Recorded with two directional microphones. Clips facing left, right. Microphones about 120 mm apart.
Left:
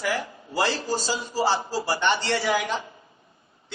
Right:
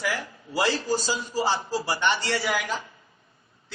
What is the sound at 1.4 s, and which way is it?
Speech, 15° right (ahead or behind).